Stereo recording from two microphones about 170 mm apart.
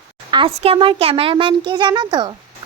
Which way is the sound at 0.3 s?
30° right (ahead or behind).